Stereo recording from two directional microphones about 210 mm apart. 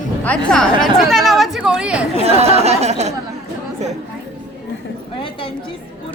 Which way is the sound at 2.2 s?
30° right (ahead or behind).